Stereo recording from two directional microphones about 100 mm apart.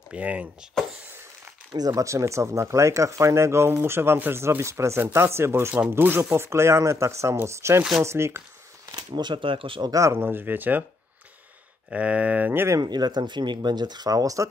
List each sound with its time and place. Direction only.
0.1 s speech: 15° right (ahead or behind)
1.7 s speech: 40° right (ahead or behind)
8.9 s speech: 50° right (ahead or behind)
9.8 s speech: 30° right (ahead or behind)
11.9 s speech: 15° right (ahead or behind)
12.7 s speech: 45° right (ahead or behind)